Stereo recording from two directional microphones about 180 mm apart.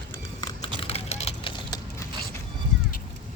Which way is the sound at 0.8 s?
35° left (ahead or behind).